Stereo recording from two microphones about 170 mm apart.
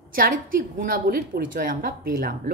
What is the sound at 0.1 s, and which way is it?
A woman's voice, 55° right (ahead or behind).